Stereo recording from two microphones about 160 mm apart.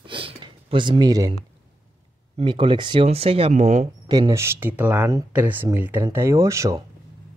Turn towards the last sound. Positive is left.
turn(degrees=-20)  # may be behind; listen again after turning